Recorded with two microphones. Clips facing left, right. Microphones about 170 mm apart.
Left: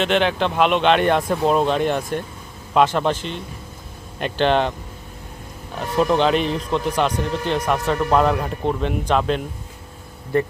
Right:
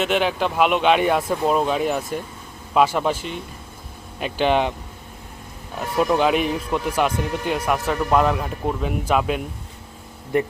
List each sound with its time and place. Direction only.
0.0 s speech: 5° right (ahead or behind)
6.0 s speech: 5° right (ahead or behind)